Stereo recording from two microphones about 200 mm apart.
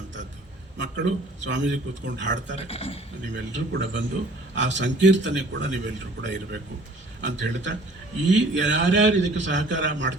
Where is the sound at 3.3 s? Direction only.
65° right (ahead or behind).